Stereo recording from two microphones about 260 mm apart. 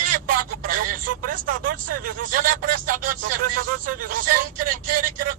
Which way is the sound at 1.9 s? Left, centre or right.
Right.